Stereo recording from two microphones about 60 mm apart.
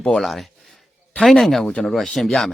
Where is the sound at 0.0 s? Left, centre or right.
Centre.